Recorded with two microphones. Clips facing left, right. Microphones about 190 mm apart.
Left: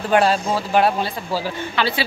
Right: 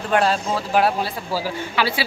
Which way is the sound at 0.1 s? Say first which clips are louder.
Left 2 dB; 5° left (ahead or behind).